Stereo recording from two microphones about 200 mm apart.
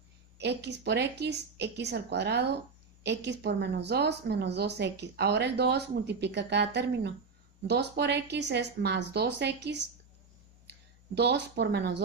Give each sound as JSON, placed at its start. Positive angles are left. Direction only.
{"t": 0.4, "sound": "a woman's voice", "side_deg": -60}
{"t": 11.1, "sound": "a woman's voice", "side_deg": -55}